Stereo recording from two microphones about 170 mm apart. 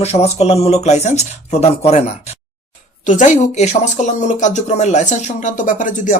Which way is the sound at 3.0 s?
45° left (ahead or behind).